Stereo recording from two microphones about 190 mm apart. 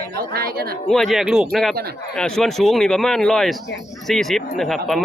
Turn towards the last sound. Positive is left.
turn(degrees=0)  # may be behind; listen again after turning